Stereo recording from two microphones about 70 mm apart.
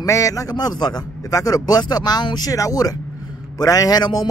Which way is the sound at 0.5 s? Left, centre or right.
Left.